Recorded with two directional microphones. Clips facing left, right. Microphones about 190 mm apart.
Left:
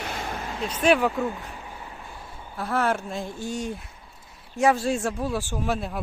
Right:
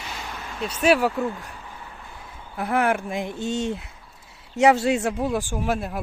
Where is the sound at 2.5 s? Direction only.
15° right (ahead or behind).